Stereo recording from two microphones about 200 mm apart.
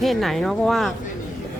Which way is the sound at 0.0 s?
Centre (ahead or behind).